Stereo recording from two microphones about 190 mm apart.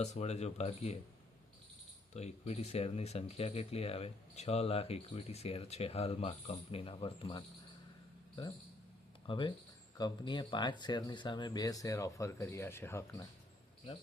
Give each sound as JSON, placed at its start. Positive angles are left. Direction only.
{"t": 0.0, "sound": "speech", "side_deg": 35}
{"t": 2.1, "sound": "speech", "side_deg": 35}
{"t": 9.2, "sound": "speech", "side_deg": 25}